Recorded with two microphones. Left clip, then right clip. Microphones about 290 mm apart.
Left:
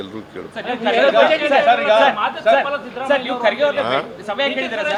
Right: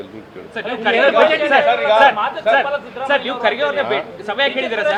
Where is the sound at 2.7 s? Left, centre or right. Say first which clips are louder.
Right 1 dB; left.